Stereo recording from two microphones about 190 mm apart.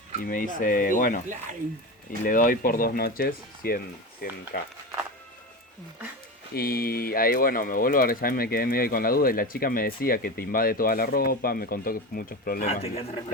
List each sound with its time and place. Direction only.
0.2 s speech: 45° left (ahead or behind)
2.2 s speech: 45° left (ahead or behind)
6.5 s speech: 50° left (ahead or behind)
12.6 s a man's voice: 35° left (ahead or behind)